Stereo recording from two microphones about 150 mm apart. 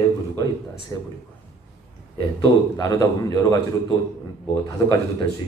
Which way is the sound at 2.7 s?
20° left (ahead or behind).